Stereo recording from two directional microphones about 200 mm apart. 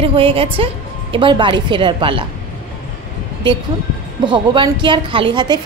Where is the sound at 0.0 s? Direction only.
25° right (ahead or behind).